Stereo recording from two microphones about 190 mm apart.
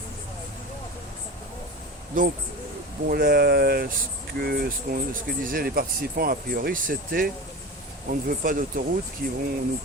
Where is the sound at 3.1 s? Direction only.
50° right (ahead or behind).